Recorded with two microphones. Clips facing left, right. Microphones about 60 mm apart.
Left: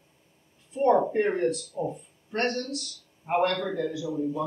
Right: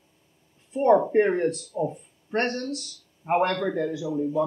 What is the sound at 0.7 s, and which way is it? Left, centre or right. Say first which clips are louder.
Speech: right 3 dB; right.